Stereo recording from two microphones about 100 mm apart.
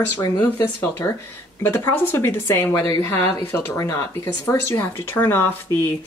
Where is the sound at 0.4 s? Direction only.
25° left (ahead or behind).